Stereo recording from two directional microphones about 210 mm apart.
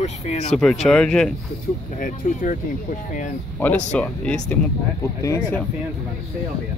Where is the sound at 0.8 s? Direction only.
5° left (ahead or behind).